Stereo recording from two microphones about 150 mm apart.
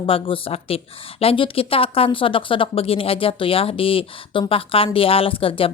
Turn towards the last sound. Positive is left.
turn(degrees=35)  # may be behind; listen again after turning